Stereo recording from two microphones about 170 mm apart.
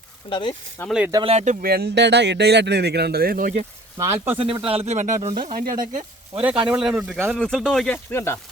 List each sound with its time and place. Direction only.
0.3 s speech: 30° left (ahead or behind)
0.8 s speech: 15° left (ahead or behind)
1.1 s speech: 35° right (ahead or behind)
1.6 s speech: 70° right (ahead or behind)
3.9 s speech: 15° right (ahead or behind)
4.4 s speech: 30° right (ahead or behind)
6.7 s speech: 5° right (ahead or behind)
8.1 s speech: 15° left (ahead or behind)